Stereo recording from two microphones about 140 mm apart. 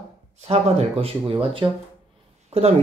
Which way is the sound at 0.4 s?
50° right (ahead or behind).